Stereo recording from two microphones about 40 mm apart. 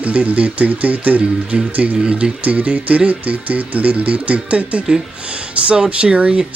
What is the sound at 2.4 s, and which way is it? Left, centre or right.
Speech, right.